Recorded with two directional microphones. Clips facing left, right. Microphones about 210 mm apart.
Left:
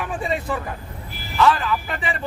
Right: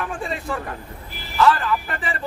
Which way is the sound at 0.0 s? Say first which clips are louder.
Left 2 dB; centre (ahead or behind).